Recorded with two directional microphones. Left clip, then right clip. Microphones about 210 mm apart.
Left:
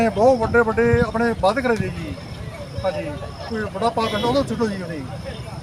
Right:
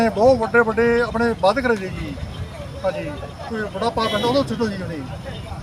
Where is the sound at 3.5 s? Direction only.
Centre (ahead or behind).